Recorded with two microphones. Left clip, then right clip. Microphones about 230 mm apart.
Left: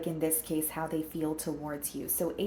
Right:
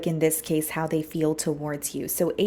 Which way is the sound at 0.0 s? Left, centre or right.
Right.